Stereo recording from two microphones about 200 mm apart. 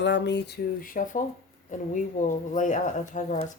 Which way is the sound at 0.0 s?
60° left (ahead or behind).